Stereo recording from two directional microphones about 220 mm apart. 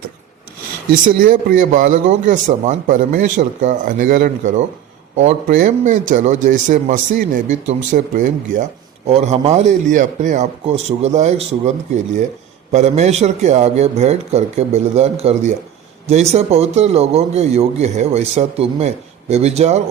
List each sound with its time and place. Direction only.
1.0 s a man's voice: 40° right (ahead or behind)
12.7 s a man's voice: 30° right (ahead or behind)